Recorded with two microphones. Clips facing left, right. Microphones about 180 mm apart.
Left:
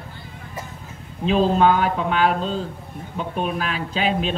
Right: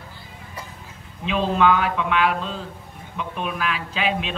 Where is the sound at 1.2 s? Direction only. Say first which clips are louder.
Left 3 dB; 35° left (ahead or behind).